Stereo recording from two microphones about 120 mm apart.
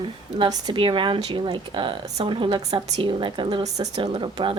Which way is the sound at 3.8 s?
60° right (ahead or behind).